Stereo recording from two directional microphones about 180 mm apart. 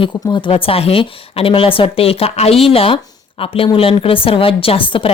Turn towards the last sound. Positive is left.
turn(degrees=30)  # may be behind; listen again after turning